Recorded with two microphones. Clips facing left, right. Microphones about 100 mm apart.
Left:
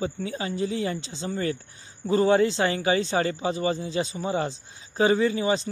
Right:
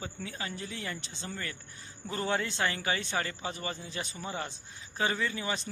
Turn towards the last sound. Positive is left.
turn(degrees=25)  # may be behind; listen again after turning